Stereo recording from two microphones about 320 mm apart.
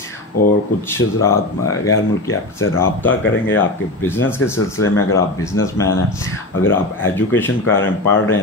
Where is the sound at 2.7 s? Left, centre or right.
Centre.